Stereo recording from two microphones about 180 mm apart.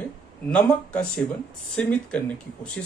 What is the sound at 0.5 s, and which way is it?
Speech, 5° left (ahead or behind).